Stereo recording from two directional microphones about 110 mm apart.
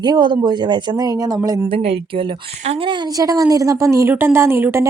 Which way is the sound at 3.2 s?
35° right (ahead or behind).